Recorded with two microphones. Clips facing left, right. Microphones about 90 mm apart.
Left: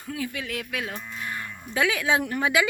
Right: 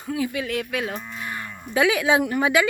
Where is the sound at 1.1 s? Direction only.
5° right (ahead or behind).